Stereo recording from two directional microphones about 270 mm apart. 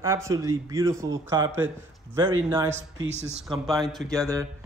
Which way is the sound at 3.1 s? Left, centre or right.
Right.